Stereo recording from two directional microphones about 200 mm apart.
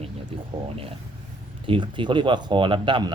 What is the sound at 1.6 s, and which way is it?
Speech, 25° right (ahead or behind).